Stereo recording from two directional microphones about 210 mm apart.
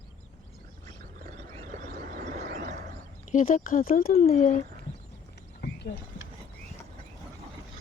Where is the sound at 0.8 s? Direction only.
40° right (ahead or behind).